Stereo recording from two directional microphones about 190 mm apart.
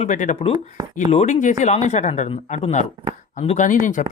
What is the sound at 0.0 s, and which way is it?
Speech, 40° left (ahead or behind).